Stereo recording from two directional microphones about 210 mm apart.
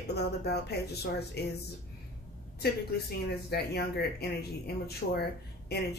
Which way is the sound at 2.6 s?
50° left (ahead or behind).